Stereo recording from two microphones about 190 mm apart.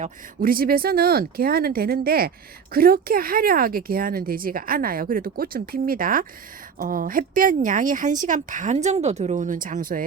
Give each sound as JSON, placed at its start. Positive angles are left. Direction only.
{"t": 0.0, "sound": "speech", "side_deg": -50}